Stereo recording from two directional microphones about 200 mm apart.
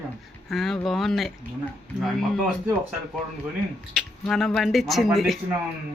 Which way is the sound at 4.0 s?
5° left (ahead or behind).